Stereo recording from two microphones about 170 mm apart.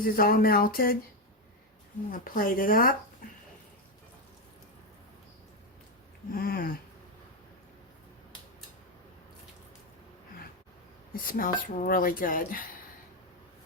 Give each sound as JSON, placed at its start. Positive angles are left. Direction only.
{"t": 0.0, "sound": "speech", "side_deg": 60}
{"t": 2.0, "sound": "speech", "side_deg": 55}
{"t": 3.2, "sound": "a sound", "side_deg": 50}
{"t": 6.3, "sound": "speech", "side_deg": 60}
{"t": 11.1, "sound": "speech", "side_deg": 55}